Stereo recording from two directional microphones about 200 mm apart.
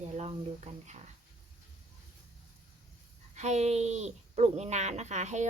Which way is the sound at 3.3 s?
35° right (ahead or behind).